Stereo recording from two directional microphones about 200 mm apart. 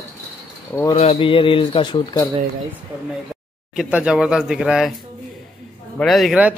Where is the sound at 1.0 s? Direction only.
30° left (ahead or behind).